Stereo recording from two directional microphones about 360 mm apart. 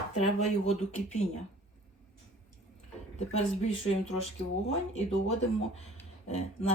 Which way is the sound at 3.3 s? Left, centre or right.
Centre.